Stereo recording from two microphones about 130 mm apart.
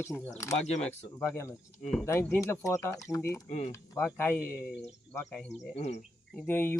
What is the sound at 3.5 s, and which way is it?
Speech, 65° left (ahead or behind).